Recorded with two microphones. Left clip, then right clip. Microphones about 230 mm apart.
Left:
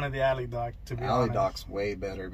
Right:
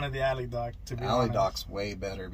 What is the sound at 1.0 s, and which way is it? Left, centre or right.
Speech, right.